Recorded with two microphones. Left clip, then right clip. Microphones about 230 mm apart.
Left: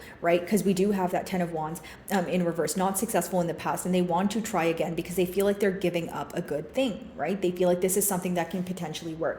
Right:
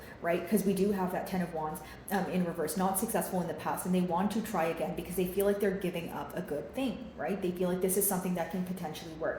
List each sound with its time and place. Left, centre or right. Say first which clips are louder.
0.2 s speech: left 6 dB; left
9.2 s speech: left 4 dB; left